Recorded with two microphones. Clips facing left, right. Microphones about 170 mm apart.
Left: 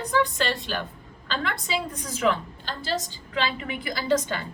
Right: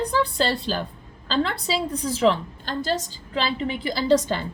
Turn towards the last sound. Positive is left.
turn(degrees=-35)  # may be behind; listen again after turning